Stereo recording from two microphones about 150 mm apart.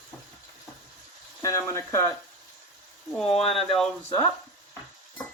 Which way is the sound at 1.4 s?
20° left (ahead or behind).